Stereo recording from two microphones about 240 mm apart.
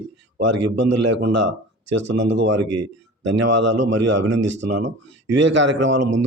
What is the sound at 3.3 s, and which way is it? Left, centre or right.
Speech, right.